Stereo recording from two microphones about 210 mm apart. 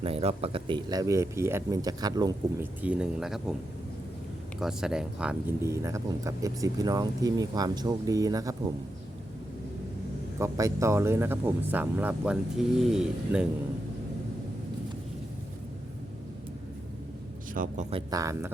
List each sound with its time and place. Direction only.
0.0 s speech: 30° right (ahead or behind)
2.8 s speech: 5° right (ahead or behind)
4.6 s speech: 5° right (ahead or behind)
10.3 s speech: 15° right (ahead or behind)
17.5 s speech: 40° right (ahead or behind)
17.9 s speech: 15° right (ahead or behind)